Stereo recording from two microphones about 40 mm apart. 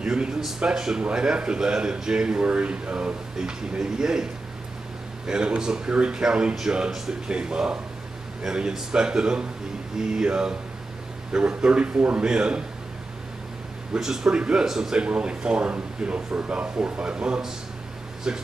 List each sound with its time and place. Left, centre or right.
0.0 s speech: right
3.3 s a man's voice: centre
13.9 s a man's voice: centre